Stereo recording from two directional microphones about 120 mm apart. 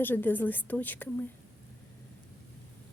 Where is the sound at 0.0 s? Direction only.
15° left (ahead or behind).